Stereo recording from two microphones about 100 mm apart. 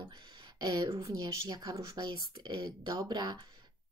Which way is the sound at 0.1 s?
50° right (ahead or behind).